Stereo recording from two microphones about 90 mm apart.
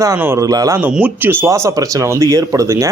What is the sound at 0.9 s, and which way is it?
Speech, 20° right (ahead or behind).